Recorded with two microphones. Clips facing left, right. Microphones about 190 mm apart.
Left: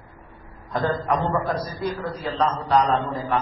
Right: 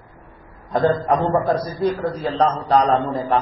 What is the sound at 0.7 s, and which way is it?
A man's voice, 35° right (ahead or behind).